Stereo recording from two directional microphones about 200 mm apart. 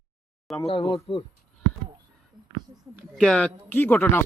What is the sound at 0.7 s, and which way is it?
Speech, 25° left (ahead or behind).